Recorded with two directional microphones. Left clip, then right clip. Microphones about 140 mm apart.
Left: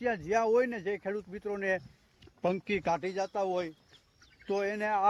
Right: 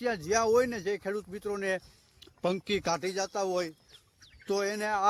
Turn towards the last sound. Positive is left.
turn(degrees=-50)  # may be behind; listen again after turning